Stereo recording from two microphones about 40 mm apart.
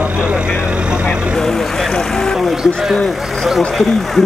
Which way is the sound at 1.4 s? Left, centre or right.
Centre.